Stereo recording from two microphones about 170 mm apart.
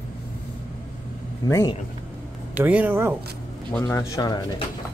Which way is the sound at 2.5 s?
10° right (ahead or behind).